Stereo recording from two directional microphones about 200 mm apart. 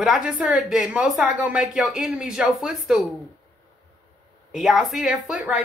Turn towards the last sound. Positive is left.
turn(degrees=-5)  # may be behind; listen again after turning